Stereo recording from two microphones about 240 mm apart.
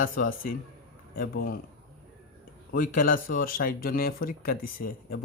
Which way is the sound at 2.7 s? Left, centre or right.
Left.